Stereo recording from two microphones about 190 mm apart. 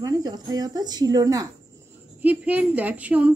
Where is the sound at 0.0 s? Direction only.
20° right (ahead or behind).